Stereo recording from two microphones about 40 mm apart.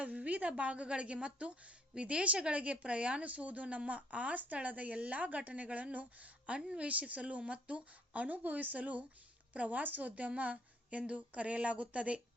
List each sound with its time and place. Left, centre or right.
0.0 s speech: right